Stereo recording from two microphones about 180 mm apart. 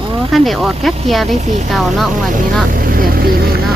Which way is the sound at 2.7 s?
55° right (ahead or behind).